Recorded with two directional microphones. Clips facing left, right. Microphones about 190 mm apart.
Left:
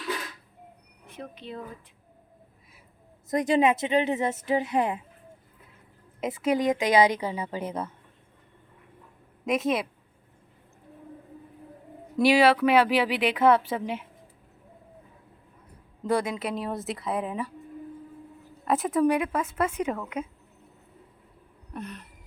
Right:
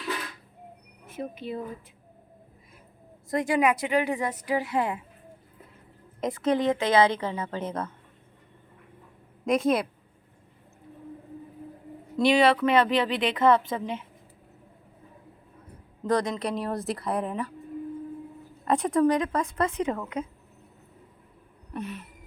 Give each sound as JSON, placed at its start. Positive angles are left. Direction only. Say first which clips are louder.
{"t": 1.0, "sound": "speech", "louder": "right 5 dB", "side_deg": -10}
{"t": 3.2, "sound": "speech", "louder": "left 2 dB", "side_deg": 20}
{"t": 6.1, "sound": "speech", "louder": "even", "side_deg": 5}
{"t": 9.5, "sound": "speech", "louder": "right 2 dB", "side_deg": 0}
{"t": 12.2, "sound": "speech", "louder": "left 1 dB", "side_deg": 10}
{"t": 16.0, "sound": "speech", "louder": "right 1 dB", "side_deg": 10}
{"t": 18.6, "sound": "speech", "louder": "right 1 dB", "side_deg": 5}
{"t": 21.7, "sound": "gasp", "louder": "right 3 dB", "side_deg": 0}